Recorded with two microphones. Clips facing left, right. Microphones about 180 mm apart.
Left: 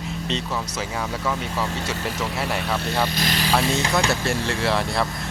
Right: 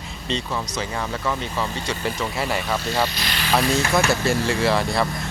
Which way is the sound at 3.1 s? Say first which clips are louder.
Left 5 dB; 45° left (ahead or behind).